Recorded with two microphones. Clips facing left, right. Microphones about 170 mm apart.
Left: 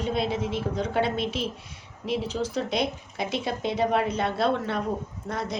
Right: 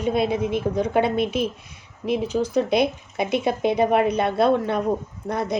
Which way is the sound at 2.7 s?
60° right (ahead or behind).